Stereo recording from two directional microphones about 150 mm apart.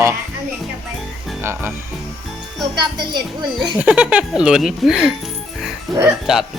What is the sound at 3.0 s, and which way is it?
Speech, 30° right (ahead or behind).